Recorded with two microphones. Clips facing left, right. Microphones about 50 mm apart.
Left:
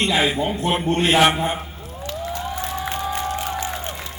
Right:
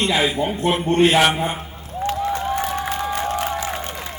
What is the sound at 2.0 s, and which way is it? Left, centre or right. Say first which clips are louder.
Applause: right 6 dB; right.